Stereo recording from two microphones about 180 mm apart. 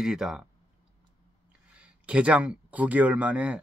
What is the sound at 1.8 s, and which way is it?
Speech, 5° right (ahead or behind).